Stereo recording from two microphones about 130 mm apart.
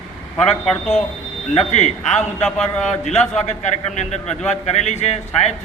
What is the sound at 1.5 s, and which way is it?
Speech, 60° left (ahead or behind).